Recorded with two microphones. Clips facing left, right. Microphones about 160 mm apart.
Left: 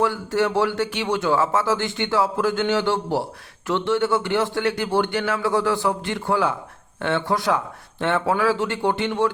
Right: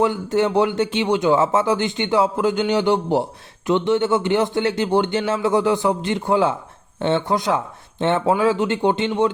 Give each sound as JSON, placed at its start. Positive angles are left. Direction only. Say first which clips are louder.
{"t": 0.0, "sound": "speech", "louder": "right 3 dB", "side_deg": -20}